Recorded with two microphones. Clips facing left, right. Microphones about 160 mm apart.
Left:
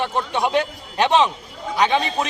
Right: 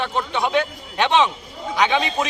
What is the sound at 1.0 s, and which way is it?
Speech, 35° left (ahead or behind).